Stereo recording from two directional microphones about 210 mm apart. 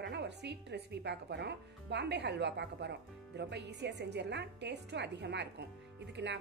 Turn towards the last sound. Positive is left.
turn(degrees=-55)  # may be behind; listen again after turning